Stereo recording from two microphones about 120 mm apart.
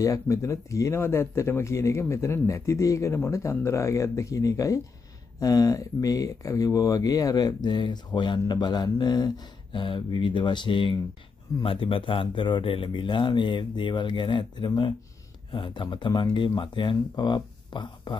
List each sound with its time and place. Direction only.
0.0 s speech: 25° left (ahead or behind)